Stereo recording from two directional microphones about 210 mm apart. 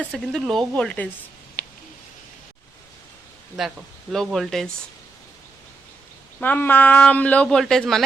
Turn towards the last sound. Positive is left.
turn(degrees=0)  # may be behind; listen again after turning